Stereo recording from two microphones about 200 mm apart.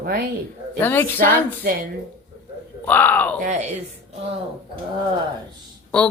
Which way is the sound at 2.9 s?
10° left (ahead or behind).